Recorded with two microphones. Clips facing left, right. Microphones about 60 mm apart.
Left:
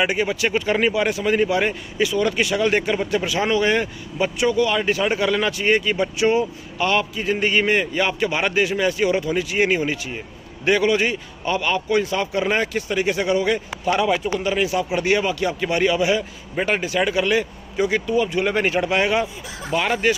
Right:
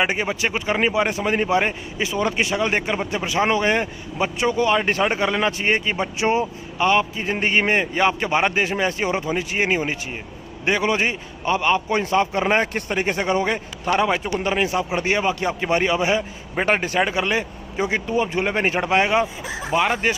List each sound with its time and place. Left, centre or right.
0.0 s speech: right
17.0 s speech: right